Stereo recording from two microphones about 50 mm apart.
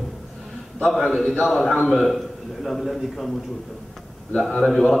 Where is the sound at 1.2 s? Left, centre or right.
Left.